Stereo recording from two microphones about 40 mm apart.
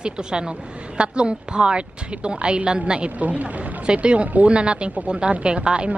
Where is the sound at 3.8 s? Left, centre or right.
Right.